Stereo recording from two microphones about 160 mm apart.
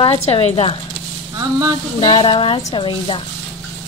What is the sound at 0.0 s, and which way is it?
Speech, 35° left (ahead or behind).